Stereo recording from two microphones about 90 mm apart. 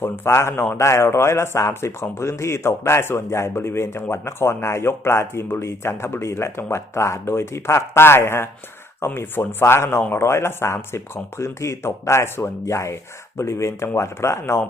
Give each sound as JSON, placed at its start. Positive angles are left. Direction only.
{"t": 0.0, "sound": "speech", "side_deg": 30}